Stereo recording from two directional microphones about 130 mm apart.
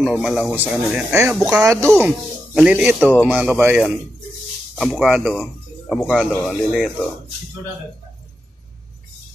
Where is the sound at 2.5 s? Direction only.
5° right (ahead or behind).